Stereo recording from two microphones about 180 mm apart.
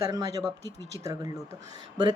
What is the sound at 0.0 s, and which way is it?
A woman's voice, 20° right (ahead or behind).